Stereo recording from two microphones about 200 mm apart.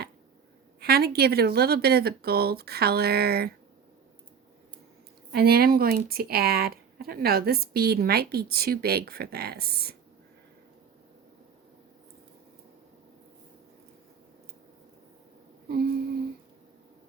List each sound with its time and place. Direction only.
0.8 s speech: 50° right (ahead or behind)
5.3 s speech: 50° right (ahead or behind)